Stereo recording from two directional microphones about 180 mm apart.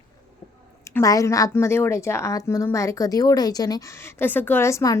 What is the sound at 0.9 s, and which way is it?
A woman's voice, 20° left (ahead or behind).